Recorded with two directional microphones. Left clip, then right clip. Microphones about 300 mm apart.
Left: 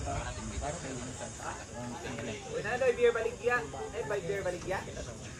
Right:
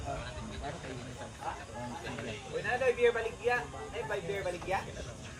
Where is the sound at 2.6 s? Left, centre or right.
Right.